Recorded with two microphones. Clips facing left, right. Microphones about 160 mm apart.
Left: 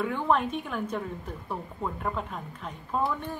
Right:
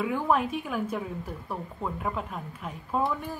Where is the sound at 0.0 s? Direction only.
5° right (ahead or behind).